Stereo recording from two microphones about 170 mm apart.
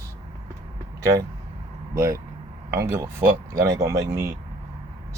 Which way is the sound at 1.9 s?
20° right (ahead or behind).